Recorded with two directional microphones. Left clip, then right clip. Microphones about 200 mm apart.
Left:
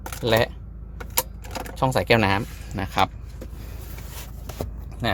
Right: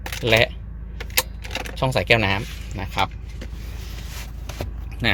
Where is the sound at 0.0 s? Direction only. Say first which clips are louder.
Right 3 dB; 5° left (ahead or behind).